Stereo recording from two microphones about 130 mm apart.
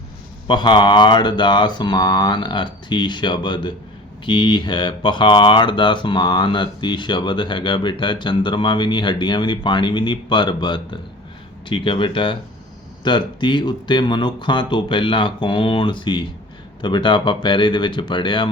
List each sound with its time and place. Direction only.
0.4 s speech: 35° left (ahead or behind)